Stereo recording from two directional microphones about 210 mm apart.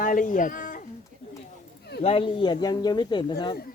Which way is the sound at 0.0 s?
40° left (ahead or behind).